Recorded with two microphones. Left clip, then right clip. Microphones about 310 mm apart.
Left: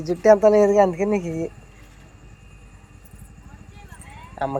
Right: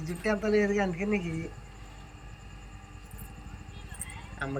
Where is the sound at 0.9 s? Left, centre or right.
Left.